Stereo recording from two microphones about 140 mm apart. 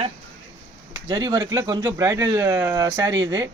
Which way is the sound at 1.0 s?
30° right (ahead or behind).